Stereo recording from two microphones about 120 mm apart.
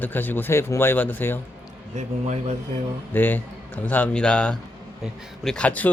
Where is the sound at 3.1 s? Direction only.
15° left (ahead or behind).